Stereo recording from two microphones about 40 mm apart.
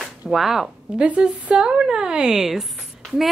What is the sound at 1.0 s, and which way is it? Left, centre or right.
Speech, right.